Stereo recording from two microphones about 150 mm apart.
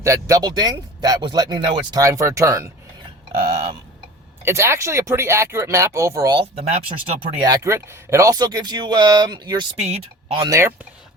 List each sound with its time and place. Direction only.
0.0 s speech: 20° right (ahead or behind)
4.4 s speech: 20° right (ahead or behind)
6.4 s speech: 45° right (ahead or behind)
7.2 s speech: 30° right (ahead or behind)
9.8 s speech: 45° right (ahead or behind)
10.4 s speech: 20° right (ahead or behind)